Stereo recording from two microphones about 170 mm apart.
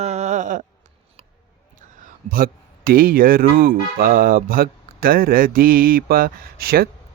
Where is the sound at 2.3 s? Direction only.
60° right (ahead or behind).